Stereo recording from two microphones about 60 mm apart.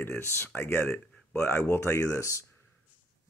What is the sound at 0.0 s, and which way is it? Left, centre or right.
Speech, left.